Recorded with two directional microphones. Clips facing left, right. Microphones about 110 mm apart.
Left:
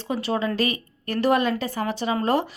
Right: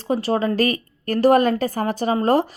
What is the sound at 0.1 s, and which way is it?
Speech, 40° right (ahead or behind).